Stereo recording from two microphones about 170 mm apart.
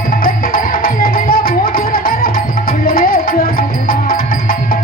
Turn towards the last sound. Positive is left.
turn(degrees=55)  # may be behind; listen again after turning